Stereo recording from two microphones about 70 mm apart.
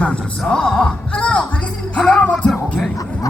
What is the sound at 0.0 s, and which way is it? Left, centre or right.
Speech, centre.